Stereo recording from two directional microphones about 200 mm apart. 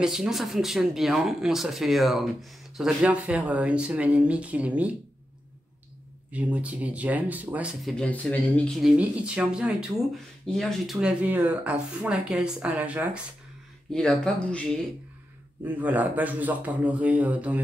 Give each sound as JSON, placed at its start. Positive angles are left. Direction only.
{"t": 0.0, "sound": "speech", "side_deg": -5}
{"t": 6.3, "sound": "speech", "side_deg": -5}
{"t": 13.9, "sound": "speech", "side_deg": 5}
{"t": 15.6, "sound": "speech", "side_deg": -10}